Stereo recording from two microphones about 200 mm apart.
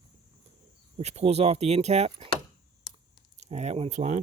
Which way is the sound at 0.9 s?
30° right (ahead or behind).